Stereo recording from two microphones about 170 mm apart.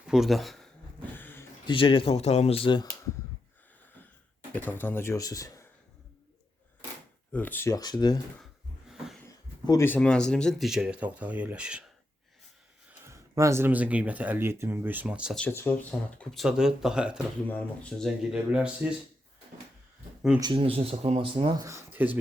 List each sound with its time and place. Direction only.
0.0 s speech: centre (ahead or behind)
1.1 s a sound: 10° left (ahead or behind)
1.6 s speech: 30° left (ahead or behind)
4.5 s speech: 10° left (ahead or behind)
7.3 s speech: 10° left (ahead or behind)
9.6 s speech: 15° left (ahead or behind); by 11.8 s 5° right (ahead or behind)
12.9 s speech: 15° right (ahead or behind)
15.4 s speech: 10° left (ahead or behind); by 18.9 s 5° right (ahead or behind)
20.4 s speech: 30° right (ahead or behind); by 22.2 s 10° right (ahead or behind)